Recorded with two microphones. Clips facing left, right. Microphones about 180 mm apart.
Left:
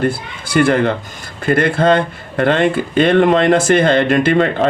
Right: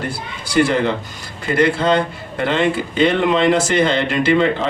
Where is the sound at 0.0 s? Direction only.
55° left (ahead or behind).